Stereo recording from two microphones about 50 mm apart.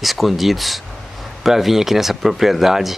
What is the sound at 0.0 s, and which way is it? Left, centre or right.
Speech, centre.